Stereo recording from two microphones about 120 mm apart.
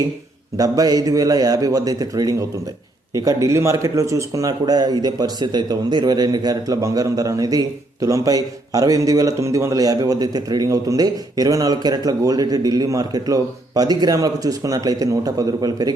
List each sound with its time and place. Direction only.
0.5 s speech: 30° right (ahead or behind)